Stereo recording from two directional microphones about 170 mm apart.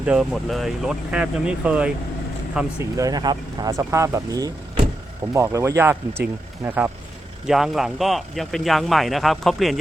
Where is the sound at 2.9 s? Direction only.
20° right (ahead or behind).